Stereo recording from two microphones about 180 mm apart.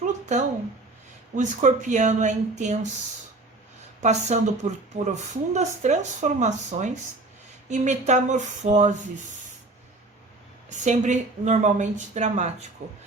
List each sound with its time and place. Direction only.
0.0 s a sound: 40° right (ahead or behind)
1.4 s speech: 45° right (ahead or behind)
4.0 s speech: 40° right (ahead or behind)
10.8 s speech: 40° right (ahead or behind)